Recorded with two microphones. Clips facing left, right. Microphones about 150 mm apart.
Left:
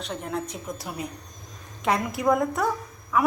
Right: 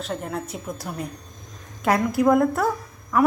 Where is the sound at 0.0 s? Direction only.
Centre (ahead or behind).